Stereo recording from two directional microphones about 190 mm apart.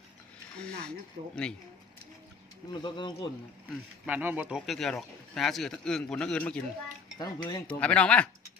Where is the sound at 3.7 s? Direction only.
10° right (ahead or behind).